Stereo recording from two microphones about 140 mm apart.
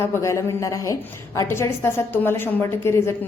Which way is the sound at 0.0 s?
20° left (ahead or behind).